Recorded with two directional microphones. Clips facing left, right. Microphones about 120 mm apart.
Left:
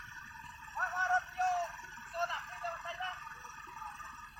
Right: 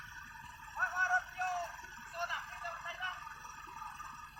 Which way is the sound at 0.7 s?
20° left (ahead or behind).